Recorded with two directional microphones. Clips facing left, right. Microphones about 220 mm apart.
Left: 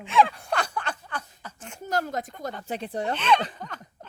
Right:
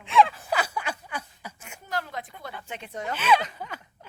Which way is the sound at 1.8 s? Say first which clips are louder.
Left 5 dB; 45° left (ahead or behind).